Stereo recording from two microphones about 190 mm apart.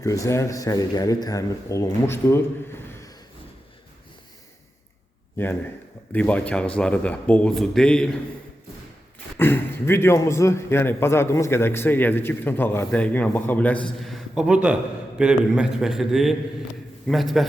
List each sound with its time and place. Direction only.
0.0 s a man's voice: 15° left (ahead or behind)
6.1 s a man's voice: 5° left (ahead or behind)
9.4 s a man's voice: 10° left (ahead or behind)